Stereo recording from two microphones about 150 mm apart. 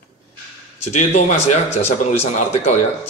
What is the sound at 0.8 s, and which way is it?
A man's voice, 50° left (ahead or behind).